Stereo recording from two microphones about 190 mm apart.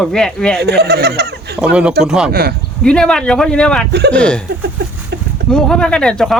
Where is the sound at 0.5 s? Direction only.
60° right (ahead or behind).